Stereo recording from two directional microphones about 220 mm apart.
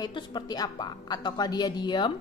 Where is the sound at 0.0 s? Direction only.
20° left (ahead or behind).